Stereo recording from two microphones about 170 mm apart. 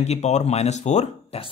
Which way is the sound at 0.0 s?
40° left (ahead or behind).